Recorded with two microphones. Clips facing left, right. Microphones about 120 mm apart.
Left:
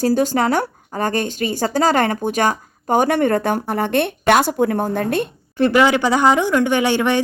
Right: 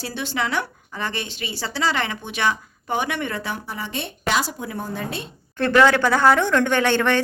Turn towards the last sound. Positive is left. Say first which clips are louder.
# left 2 dB
turn(degrees=10)  # may be behind; listen again after turning